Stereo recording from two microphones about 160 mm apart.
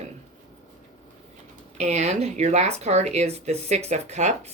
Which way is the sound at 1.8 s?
45° right (ahead or behind).